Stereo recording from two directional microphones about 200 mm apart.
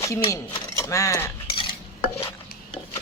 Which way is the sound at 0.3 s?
15° left (ahead or behind).